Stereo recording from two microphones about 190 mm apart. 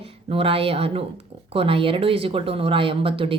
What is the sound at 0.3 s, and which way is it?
A woman's voice, 30° right (ahead or behind).